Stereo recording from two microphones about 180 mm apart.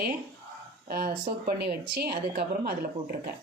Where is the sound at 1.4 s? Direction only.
60° right (ahead or behind).